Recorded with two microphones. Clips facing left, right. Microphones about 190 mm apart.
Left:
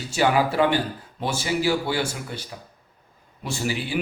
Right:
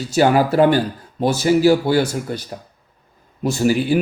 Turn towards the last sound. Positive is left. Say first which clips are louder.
# right 10 dB
turn(degrees=-45)  # may be behind; listen again after turning